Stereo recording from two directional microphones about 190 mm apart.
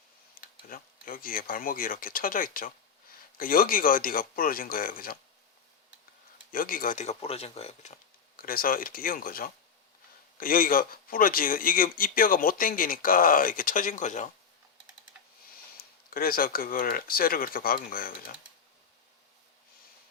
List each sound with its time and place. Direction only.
0.4 s a sound: 50° left (ahead or behind)
0.7 s speech: 50° left (ahead or behind)
6.5 s speech: 50° left (ahead or behind)
8.4 s speech: 50° left (ahead or behind)
16.0 s speech: 50° left (ahead or behind)